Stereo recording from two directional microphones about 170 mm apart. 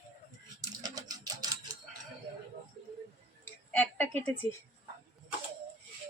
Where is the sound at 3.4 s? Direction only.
10° left (ahead or behind).